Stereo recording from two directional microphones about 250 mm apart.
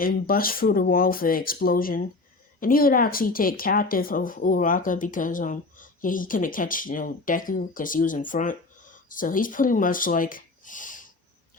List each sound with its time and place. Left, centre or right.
0.0 s speech: left